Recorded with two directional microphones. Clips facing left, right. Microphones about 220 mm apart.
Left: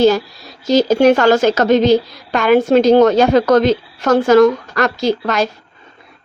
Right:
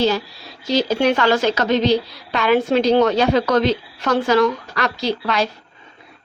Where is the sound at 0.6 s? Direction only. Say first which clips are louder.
Left 7 dB; 45° left (ahead or behind).